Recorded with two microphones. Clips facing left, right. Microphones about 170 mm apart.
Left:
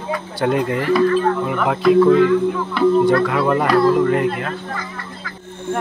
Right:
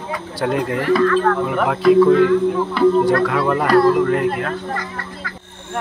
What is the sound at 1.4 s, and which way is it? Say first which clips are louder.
Speech: right 1 dB; centre (ahead or behind).